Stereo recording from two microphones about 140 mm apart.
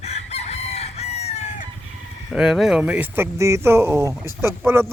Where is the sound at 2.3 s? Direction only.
Centre (ahead or behind).